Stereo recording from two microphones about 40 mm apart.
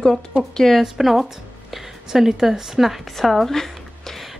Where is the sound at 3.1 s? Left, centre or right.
Centre.